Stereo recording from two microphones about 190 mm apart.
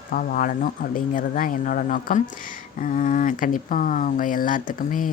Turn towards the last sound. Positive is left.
turn(degrees=45)  # may be behind; listen again after turning